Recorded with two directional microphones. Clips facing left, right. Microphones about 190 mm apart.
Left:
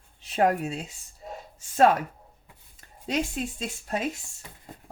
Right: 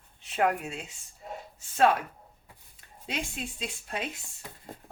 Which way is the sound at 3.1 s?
45° left (ahead or behind).